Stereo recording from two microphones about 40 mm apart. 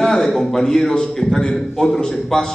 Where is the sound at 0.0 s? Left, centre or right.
Centre.